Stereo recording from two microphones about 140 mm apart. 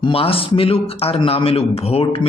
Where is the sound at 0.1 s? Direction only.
40° left (ahead or behind).